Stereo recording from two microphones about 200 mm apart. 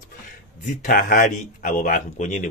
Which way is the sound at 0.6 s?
45° left (ahead or behind).